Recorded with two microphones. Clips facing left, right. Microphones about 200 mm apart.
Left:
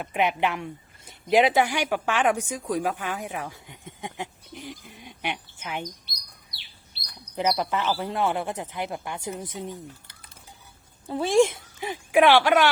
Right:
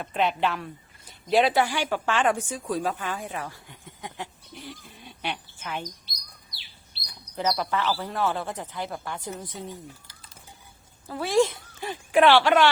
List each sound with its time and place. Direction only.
0.0 s speech: 15° left (ahead or behind)
7.3 s speech: 15° left (ahead or behind)
11.1 s speech: 25° left (ahead or behind)